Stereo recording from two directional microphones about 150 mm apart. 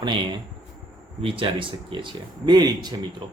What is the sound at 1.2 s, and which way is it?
Speech, 35° right (ahead or behind).